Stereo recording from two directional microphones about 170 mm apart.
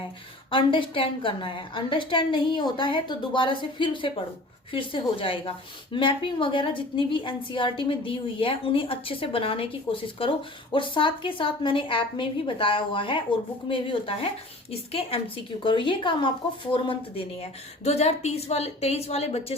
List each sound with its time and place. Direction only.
0.5 s a woman's voice: 30° left (ahead or behind)